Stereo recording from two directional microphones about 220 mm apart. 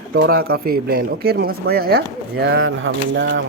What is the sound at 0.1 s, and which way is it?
Speech, 45° right (ahead or behind).